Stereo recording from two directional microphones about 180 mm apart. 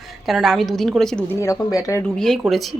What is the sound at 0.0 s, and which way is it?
A woman's voice, centre (ahead or behind).